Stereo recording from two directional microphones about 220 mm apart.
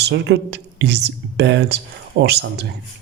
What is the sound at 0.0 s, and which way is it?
Speech, 50° right (ahead or behind).